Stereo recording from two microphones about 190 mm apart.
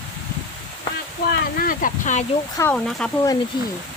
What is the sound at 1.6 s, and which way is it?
Speech, 45° left (ahead or behind).